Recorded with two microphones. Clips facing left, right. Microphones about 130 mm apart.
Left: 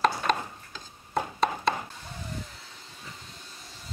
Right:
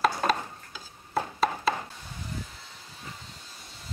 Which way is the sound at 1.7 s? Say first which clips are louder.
Left 1 dB; centre (ahead or behind).